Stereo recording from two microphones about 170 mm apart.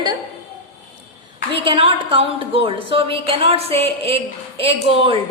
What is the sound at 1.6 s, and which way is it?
A woman's voice, 30° right (ahead or behind).